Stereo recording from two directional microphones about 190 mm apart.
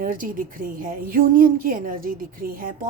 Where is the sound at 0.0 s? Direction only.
45° right (ahead or behind).